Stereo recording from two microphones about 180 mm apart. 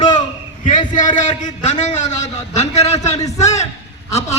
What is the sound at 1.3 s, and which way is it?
A man's voice, 40° left (ahead or behind).